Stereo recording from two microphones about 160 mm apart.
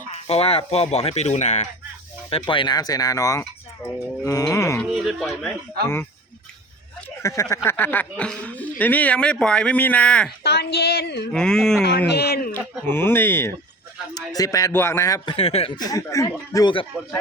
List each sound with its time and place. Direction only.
0.1 s speech: 40° left (ahead or behind)
2.3 s speech: 30° left (ahead or behind)
4.9 s speech: centre (ahead or behind)
7.2 s speech: 15° left (ahead or behind)
10.4 s speech: 90° left
11.3 s speech: 5° left (ahead or behind)
11.8 s speech: 90° left
12.8 s speech: 15° left (ahead or behind)
15.4 s speech: 35° left (ahead or behind)
15.9 s speech: 20° left (ahead or behind)
16.9 s speech: 5° right (ahead or behind)